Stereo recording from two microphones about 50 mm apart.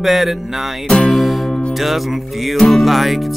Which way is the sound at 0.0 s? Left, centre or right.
Centre.